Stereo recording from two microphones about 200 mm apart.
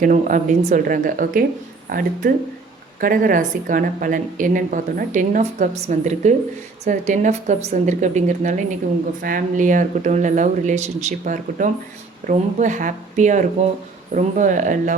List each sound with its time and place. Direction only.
0.0 s a woman's voice: 40° right (ahead or behind)